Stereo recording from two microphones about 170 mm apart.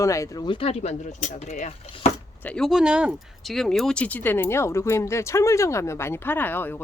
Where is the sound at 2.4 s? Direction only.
5° left (ahead or behind).